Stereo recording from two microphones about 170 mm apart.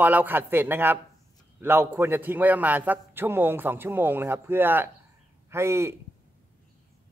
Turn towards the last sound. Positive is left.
turn(degrees=-15)  # may be behind; listen again after turning